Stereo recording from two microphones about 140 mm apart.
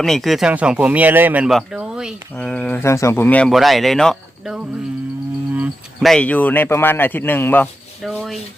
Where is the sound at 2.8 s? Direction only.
20° left (ahead or behind).